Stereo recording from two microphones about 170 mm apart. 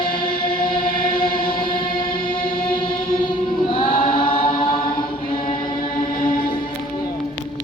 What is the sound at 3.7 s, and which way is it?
Chant, 30° left (ahead or behind).